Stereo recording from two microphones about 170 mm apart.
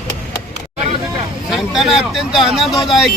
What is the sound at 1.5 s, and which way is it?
Speech, centre (ahead or behind).